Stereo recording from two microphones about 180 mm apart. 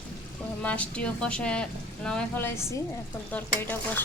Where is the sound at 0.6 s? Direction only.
5° left (ahead or behind).